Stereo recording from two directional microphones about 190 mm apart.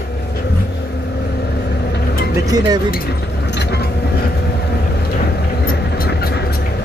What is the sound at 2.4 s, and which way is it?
Speech, 20° right (ahead or behind).